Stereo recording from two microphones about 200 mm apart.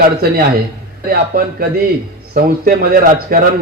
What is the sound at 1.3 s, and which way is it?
A man's voice, 50° right (ahead or behind).